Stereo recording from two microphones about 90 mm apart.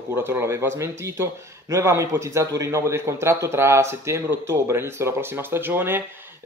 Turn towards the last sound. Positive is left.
turn(degrees=-25)  # may be behind; listen again after turning